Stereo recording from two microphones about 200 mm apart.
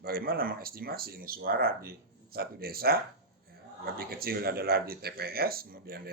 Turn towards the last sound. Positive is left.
turn(degrees=-50)  # may be behind; listen again after turning